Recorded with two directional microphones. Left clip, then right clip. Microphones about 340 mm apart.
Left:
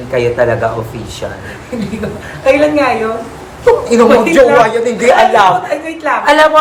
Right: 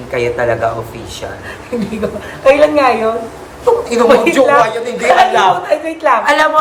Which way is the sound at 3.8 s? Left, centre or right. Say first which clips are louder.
Even; centre.